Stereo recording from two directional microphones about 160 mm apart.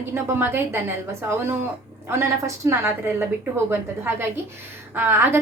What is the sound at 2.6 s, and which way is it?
A woman's voice, 15° right (ahead or behind).